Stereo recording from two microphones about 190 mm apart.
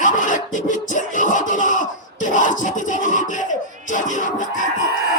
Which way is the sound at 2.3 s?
40° left (ahead or behind).